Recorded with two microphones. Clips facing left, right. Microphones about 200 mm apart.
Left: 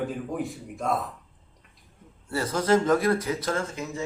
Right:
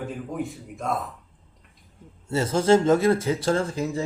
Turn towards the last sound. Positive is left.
turn(degrees=-35)  # may be behind; listen again after turning